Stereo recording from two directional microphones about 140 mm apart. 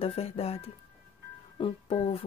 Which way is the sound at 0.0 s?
45° left (ahead or behind).